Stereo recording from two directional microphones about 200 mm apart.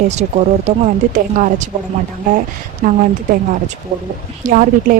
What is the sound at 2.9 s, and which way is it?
Speech, 40° right (ahead or behind).